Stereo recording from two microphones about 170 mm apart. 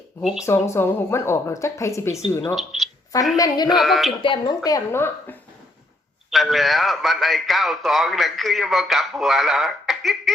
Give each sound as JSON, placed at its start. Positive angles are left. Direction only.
{"t": 0.2, "sound": "a man's voice", "side_deg": 0}
{"t": 0.4, "sound": "a woman's voice", "side_deg": 15}
{"t": 2.6, "sound": "a man's voice", "side_deg": 0}
{"t": 3.3, "sound": "a woman's voice", "side_deg": 20}
{"t": 3.7, "sound": "a man's voice", "side_deg": 0}
{"t": 4.2, "sound": "a woman's voice", "side_deg": 25}
{"t": 6.3, "sound": "a man's voice", "side_deg": 0}